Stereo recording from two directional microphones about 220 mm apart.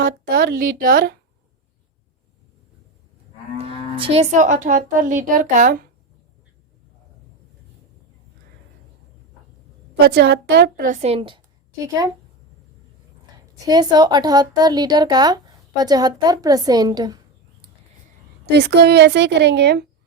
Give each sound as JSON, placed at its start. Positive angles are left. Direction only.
{"t": 0.0, "sound": "speech", "side_deg": -40}
{"t": 3.6, "sound": "speech", "side_deg": -25}
{"t": 10.2, "sound": "a woman's voice", "side_deg": -45}
{"t": 11.0, "sound": "a woman's voice", "side_deg": -25}
{"t": 13.7, "sound": "a woman's voice", "side_deg": -20}
{"t": 18.4, "sound": "a woman's voice", "side_deg": -50}